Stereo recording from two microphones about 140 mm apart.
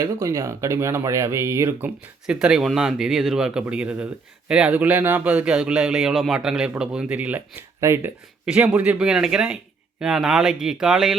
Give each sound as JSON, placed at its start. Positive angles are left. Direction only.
{"t": 0.0, "sound": "speech", "side_deg": -20}
{"t": 2.2, "sound": "speech", "side_deg": -5}